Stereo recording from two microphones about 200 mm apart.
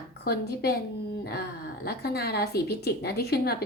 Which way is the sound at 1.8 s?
55° left (ahead or behind).